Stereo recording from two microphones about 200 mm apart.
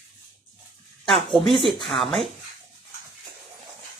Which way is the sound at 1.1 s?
Centre (ahead or behind).